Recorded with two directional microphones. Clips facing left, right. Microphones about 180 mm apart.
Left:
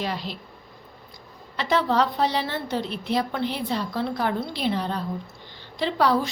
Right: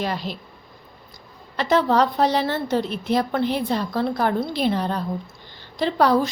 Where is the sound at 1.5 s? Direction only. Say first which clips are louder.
Right 4 dB; 45° right (ahead or behind).